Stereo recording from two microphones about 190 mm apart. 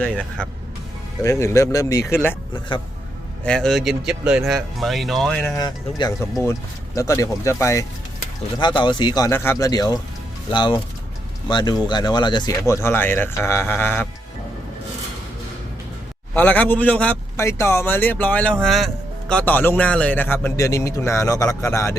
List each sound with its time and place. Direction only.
0.0 s speech: 5° left (ahead or behind)
3.4 s speech: 5° left (ahead or behind)
5.5 s speech: 20° left (ahead or behind)
16.3 s speech: 10° left (ahead or behind)